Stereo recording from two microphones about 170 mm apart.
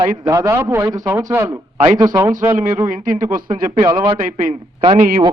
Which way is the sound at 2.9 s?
50° right (ahead or behind).